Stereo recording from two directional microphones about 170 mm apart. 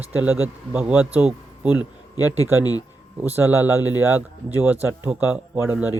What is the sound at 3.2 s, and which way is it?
Speech, 10° right (ahead or behind).